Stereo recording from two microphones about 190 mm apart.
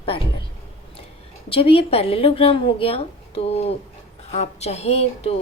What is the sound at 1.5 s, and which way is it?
Speech, 30° left (ahead or behind).